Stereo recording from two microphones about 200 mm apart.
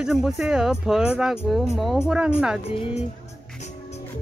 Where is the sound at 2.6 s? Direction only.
30° left (ahead or behind).